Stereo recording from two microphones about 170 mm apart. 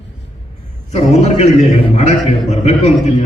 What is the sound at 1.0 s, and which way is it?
A man's voice, 40° left (ahead or behind).